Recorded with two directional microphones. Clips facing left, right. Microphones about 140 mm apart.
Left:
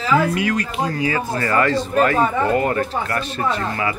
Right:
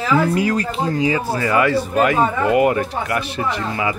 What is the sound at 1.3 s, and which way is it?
Speech, 10° right (ahead or behind).